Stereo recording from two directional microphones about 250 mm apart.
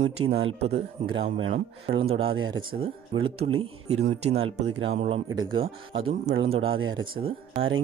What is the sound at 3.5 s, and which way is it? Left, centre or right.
Speech, right.